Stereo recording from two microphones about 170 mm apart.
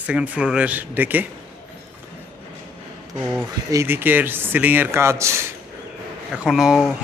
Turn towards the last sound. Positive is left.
turn(degrees=0)  # may be behind; listen again after turning